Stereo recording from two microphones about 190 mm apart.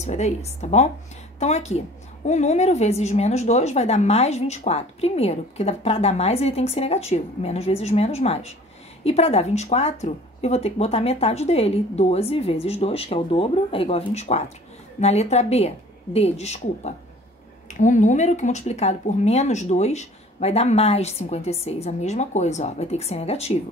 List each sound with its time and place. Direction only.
0.0 s a woman's voice: 35° left (ahead or behind)